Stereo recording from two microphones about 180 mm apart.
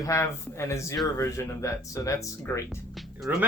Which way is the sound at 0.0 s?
15° left (ahead or behind).